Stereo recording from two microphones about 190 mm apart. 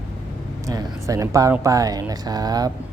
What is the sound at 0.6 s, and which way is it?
Speech, 20° right (ahead or behind).